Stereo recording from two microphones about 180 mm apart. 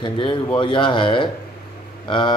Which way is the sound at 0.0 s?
25° left (ahead or behind).